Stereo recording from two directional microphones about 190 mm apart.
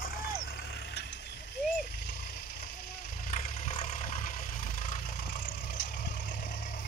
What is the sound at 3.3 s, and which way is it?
Vehicle, 35° left (ahead or behind).